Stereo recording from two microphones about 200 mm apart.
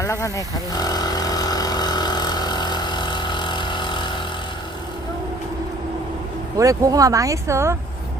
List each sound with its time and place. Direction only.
0.0 s vehicle: 15° left (ahead or behind)
6.6 s speech: 15° right (ahead or behind)